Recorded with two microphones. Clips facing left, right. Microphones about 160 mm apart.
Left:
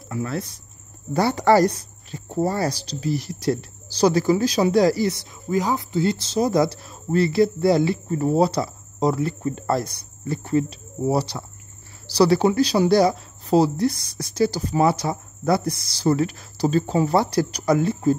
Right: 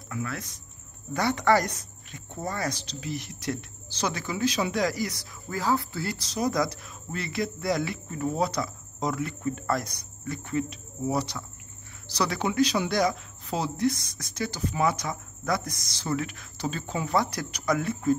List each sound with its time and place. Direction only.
0.1 s speech: 30° left (ahead or behind)